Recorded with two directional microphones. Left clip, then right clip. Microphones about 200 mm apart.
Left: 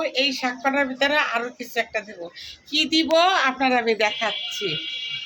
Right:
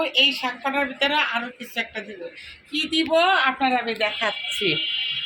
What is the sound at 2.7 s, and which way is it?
A woman's voice, 40° left (ahead or behind).